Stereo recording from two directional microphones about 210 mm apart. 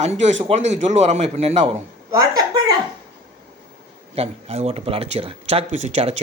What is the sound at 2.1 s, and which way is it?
Speech, 15° right (ahead or behind).